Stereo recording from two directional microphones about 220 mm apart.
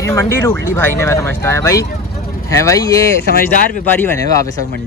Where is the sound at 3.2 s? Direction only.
40° left (ahead or behind).